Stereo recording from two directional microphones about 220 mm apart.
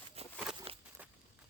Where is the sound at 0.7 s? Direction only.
25° right (ahead or behind).